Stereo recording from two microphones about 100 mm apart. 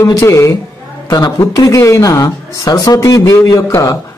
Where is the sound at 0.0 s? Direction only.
30° left (ahead or behind).